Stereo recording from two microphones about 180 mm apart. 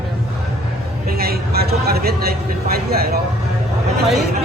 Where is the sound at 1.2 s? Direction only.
60° right (ahead or behind).